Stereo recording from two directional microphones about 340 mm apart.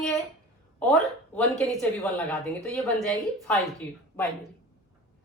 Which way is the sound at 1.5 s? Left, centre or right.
Centre.